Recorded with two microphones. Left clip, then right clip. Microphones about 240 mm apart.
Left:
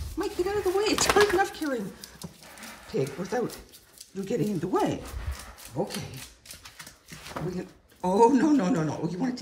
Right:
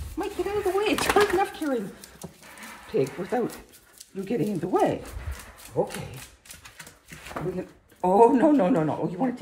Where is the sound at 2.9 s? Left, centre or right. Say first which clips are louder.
Right 3 dB; centre.